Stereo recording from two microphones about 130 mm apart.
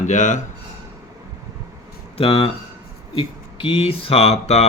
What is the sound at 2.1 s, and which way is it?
Speech, 50° left (ahead or behind).